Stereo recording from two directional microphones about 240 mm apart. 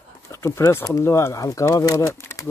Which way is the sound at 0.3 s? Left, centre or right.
Centre.